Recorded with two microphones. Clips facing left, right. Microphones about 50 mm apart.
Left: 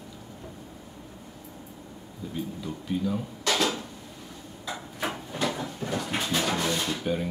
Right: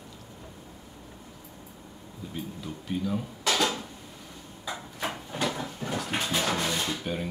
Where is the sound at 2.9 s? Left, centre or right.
Centre.